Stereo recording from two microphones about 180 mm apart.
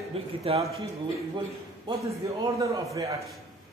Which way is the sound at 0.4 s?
35° right (ahead or behind).